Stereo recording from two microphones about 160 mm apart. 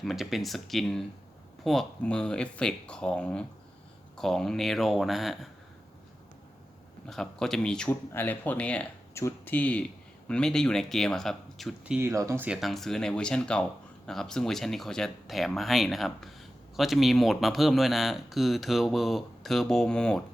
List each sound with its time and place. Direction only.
0.0 s speech: centre (ahead or behind)
7.1 s speech: 5° left (ahead or behind)
11.9 s speech: 20° right (ahead or behind)
12.5 s speech: centre (ahead or behind)